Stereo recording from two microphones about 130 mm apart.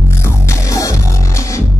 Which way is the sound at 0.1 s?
20° left (ahead or behind).